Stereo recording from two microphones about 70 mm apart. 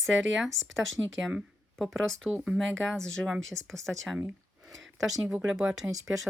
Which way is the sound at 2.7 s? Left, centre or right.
Centre.